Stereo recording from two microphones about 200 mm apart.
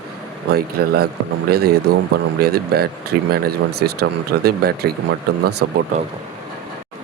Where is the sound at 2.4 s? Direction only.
50° right (ahead or behind).